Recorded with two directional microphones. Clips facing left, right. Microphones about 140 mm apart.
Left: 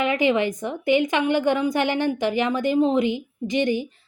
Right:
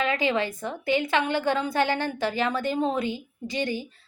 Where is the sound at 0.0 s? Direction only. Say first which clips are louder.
Left 5 dB; 20° left (ahead or behind).